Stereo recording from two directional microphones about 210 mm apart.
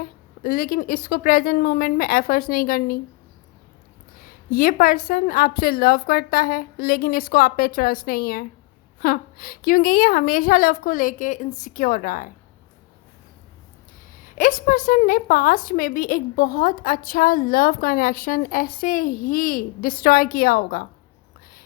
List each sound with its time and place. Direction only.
0.0 s a woman's voice: 45° left (ahead or behind)
4.5 s a woman's voice: 45° left (ahead or behind)
14.2 s a woman's voice: 40° left (ahead or behind)